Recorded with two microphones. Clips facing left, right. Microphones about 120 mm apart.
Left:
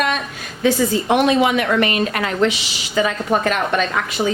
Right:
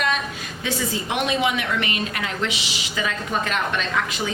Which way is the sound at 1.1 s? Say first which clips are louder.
Left 7 dB; 45° left (ahead or behind).